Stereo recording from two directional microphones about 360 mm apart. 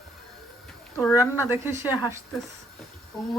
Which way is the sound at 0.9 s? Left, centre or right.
Centre.